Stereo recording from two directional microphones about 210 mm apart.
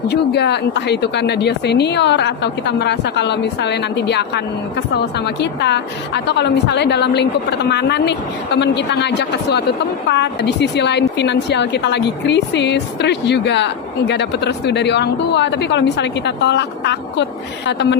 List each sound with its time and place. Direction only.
0.1 s a woman's voice: 55° left (ahead or behind)